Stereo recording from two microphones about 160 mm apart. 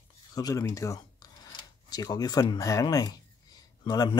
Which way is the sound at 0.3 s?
25° left (ahead or behind).